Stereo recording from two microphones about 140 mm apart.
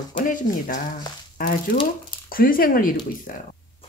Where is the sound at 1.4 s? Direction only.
90° left.